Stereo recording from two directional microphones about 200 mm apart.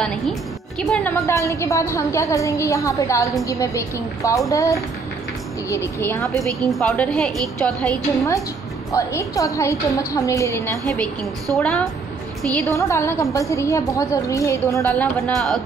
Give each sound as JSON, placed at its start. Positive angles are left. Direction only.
{"t": 0.0, "sound": "a woman's voice", "side_deg": 5}
{"t": 11.5, "sound": "a woman's voice", "side_deg": 5}
{"t": 12.7, "sound": "a woman's voice", "side_deg": 15}